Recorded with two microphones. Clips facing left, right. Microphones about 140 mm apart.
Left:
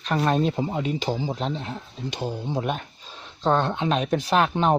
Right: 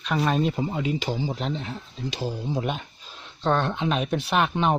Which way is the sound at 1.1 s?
25° left (ahead or behind).